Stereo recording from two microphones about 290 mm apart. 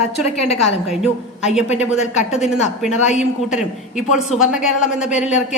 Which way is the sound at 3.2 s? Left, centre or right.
Centre.